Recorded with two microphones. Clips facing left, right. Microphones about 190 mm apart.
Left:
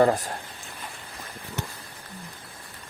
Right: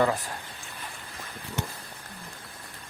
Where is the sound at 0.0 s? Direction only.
40° left (ahead or behind).